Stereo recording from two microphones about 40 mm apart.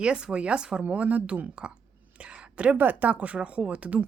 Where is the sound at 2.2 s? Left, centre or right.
Right.